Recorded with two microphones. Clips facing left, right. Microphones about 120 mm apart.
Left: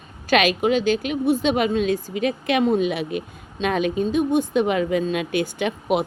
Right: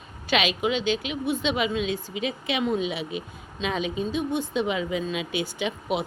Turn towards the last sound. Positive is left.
turn(degrees=55)  # may be behind; listen again after turning